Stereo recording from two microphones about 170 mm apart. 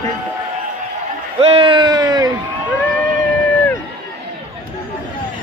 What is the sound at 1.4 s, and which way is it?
Speech, 35° right (ahead or behind).